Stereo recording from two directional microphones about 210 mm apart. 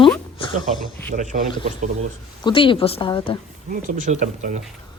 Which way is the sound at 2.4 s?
25° left (ahead or behind).